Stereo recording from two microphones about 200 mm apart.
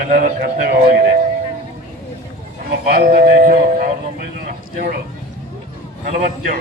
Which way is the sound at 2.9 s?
45° right (ahead or behind).